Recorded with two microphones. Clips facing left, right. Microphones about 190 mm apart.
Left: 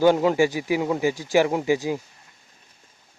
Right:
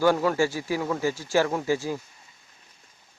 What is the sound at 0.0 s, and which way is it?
Speech, 20° left (ahead or behind).